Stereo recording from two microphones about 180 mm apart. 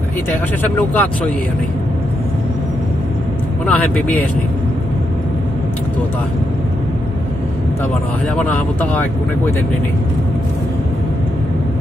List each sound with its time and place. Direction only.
0.6 s speech: 10° left (ahead or behind)
3.6 s speech: 10° left (ahead or behind)
8.4 s speech: 10° left (ahead or behind)